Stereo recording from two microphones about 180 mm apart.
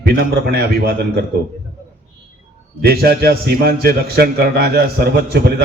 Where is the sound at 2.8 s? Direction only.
60° right (ahead or behind).